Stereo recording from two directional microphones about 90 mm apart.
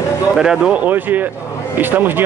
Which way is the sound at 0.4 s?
10° right (ahead or behind).